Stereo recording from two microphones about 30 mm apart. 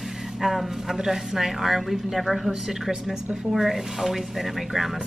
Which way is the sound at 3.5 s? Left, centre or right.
Centre.